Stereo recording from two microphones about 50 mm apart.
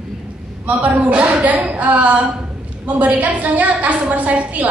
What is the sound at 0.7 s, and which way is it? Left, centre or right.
A woman's voice, right.